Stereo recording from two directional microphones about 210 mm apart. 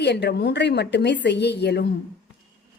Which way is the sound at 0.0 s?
55° left (ahead or behind).